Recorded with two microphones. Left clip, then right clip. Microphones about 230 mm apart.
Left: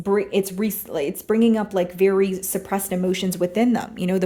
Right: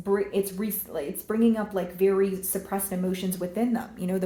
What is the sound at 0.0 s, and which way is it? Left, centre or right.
Speech, left.